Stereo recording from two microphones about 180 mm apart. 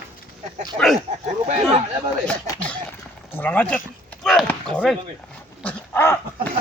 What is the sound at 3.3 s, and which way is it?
Speech, 10° left (ahead or behind).